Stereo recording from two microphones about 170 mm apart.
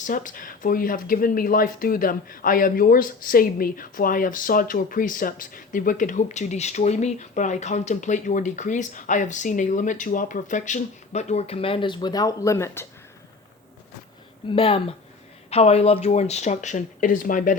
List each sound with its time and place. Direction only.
0.0 s speech: 50° left (ahead or behind); by 12.9 s 15° left (ahead or behind)
14.5 s speech: 30° left (ahead or behind); by 17.5 s 50° left (ahead or behind)